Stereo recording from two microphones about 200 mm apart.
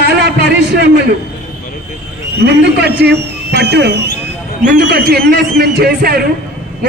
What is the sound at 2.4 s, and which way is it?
A man's voice, 55° right (ahead or behind).